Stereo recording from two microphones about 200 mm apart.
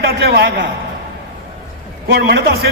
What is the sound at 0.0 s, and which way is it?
Speech, 50° right (ahead or behind).